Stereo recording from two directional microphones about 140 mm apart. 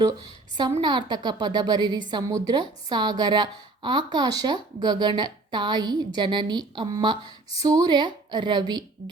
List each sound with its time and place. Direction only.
0.8 s a woman's voice: 30° right (ahead or behind)